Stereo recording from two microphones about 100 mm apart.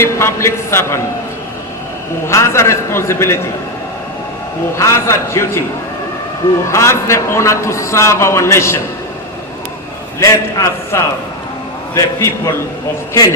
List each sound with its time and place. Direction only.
0.0 s a man's voice: 25° left (ahead or behind)
2.2 s a man's voice: 25° left (ahead or behind)
4.8 s a man's voice: 30° left (ahead or behind)
6.7 s a man's voice: 30° left (ahead or behind)
10.2 s a man's voice: 30° left (ahead or behind)